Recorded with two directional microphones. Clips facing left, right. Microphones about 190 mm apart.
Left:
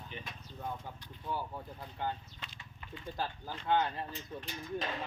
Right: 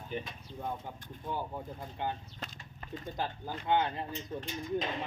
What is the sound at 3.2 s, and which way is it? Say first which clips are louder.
Speech: right 2 dB; 20° right (ahead or behind).